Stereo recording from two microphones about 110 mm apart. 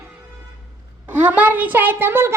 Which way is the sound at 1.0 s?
15° right (ahead or behind).